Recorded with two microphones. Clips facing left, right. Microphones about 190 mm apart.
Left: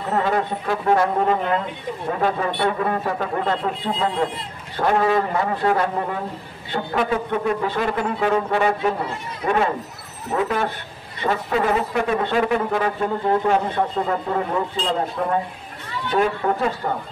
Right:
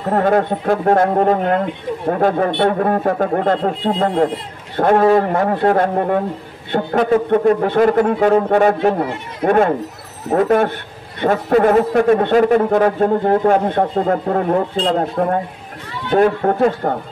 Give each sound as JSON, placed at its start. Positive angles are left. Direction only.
{"t": 0.1, "sound": "a man's voice", "side_deg": -50}